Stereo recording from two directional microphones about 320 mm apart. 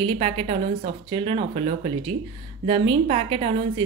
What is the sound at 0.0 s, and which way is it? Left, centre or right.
A woman's voice, centre.